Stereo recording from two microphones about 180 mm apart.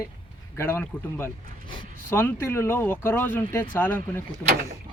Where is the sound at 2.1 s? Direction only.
10° left (ahead or behind).